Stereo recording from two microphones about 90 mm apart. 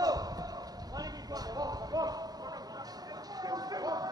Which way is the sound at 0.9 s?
45° right (ahead or behind).